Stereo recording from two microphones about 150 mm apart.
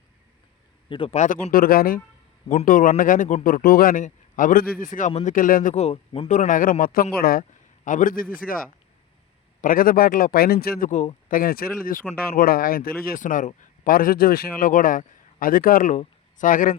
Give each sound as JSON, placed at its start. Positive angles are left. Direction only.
{"t": 0.9, "sound": "speech", "side_deg": 35}
{"t": 1.1, "sound": "a man's voice", "side_deg": 55}
{"t": 2.5, "sound": "a man's voice", "side_deg": 60}
{"t": 5.7, "sound": "speech", "side_deg": 40}
{"t": 6.3, "sound": "a man's voice", "side_deg": 60}
{"t": 7.9, "sound": "a man's voice", "side_deg": 60}